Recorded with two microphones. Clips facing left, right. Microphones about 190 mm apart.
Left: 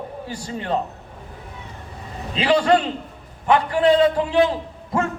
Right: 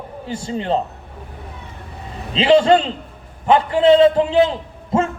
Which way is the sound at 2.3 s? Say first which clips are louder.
Right 4 dB; 25° right (ahead or behind).